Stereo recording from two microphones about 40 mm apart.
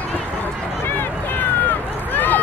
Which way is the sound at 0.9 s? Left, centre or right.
Left.